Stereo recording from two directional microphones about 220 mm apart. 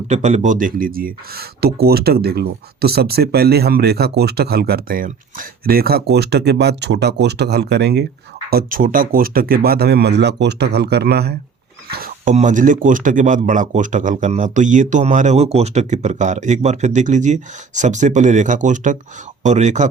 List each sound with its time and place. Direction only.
0.1 s speech: 35° right (ahead or behind)